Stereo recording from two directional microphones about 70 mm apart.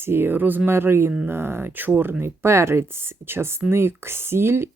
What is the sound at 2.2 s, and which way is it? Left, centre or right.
Speech, right.